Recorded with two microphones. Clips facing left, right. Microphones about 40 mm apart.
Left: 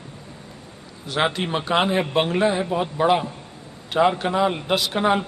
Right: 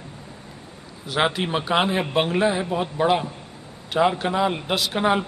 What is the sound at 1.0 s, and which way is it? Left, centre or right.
Speech, centre.